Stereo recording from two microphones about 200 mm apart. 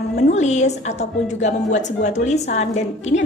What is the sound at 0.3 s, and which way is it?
A woman's voice, 35° left (ahead or behind).